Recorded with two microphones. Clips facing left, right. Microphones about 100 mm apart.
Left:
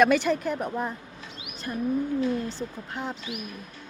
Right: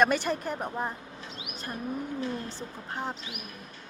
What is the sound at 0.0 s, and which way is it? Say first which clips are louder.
Speech: left 4 dB; 40° right (ahead or behind).